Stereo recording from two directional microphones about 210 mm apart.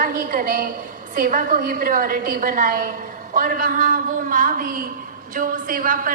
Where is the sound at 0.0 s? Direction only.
40° right (ahead or behind).